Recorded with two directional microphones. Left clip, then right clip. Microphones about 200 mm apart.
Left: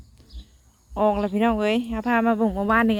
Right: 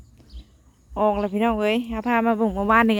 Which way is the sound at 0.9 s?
10° right (ahead or behind).